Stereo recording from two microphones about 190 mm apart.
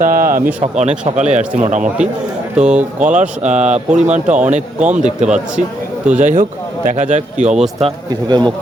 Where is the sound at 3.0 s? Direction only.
40° right (ahead or behind).